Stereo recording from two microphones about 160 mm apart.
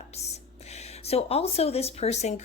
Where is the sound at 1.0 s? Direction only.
40° left (ahead or behind).